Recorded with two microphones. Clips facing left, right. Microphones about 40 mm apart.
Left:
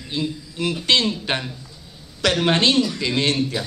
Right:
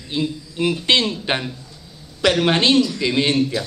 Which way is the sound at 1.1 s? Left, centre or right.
Centre.